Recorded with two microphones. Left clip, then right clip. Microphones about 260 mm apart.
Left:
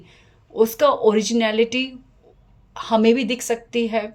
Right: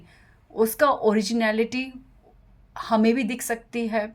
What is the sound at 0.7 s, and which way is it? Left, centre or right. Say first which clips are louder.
Speech: left 3 dB; right.